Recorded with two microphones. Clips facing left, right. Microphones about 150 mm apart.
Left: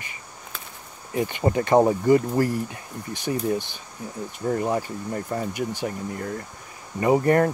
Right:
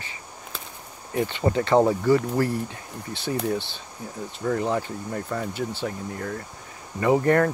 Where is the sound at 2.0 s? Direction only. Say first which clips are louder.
Left 2 dB; 45° left (ahead or behind).